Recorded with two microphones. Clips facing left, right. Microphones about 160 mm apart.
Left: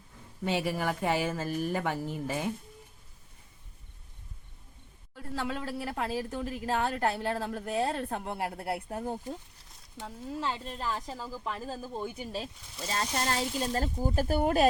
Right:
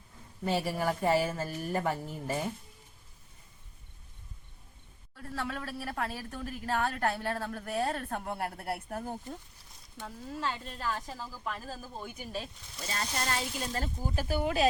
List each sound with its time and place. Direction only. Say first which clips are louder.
0.8 s a woman's voice: right 2 dB; centre (ahead or behind)
5.1 s speech: left 3 dB; 20° left (ahead or behind); by 14.7 s 50° left (ahead or behind)